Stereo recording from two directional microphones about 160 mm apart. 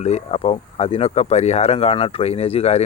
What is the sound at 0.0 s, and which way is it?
Speech, 40° left (ahead or behind).